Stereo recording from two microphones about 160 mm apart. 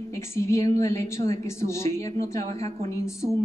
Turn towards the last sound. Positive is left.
turn(degrees=20)  # may be behind; listen again after turning